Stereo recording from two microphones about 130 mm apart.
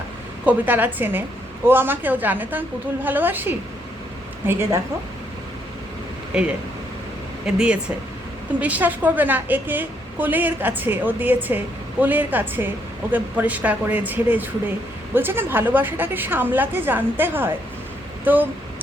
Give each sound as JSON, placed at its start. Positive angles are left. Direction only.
{"t": 0.4, "sound": "a woman's voice", "side_deg": -15}
{"t": 6.3, "sound": "a woman's voice", "side_deg": -5}